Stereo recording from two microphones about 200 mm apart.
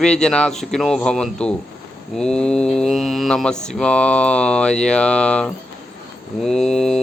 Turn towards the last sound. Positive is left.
turn(degrees=0)  # may be behind; listen again after turning